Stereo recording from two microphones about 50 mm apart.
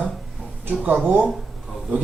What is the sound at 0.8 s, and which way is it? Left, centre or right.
Speech, right.